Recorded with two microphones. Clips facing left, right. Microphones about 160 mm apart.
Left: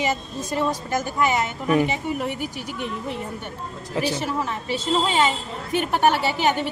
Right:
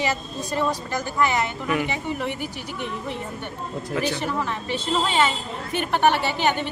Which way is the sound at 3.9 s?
30° left (ahead or behind).